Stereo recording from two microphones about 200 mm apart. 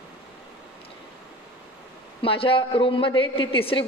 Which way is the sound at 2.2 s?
25° left (ahead or behind).